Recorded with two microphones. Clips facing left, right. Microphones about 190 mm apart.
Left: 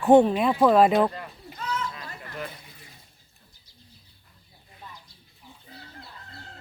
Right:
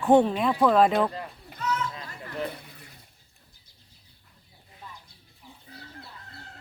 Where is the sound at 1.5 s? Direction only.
55° right (ahead or behind).